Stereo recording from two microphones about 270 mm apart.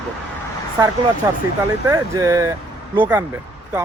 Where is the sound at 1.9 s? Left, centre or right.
Centre.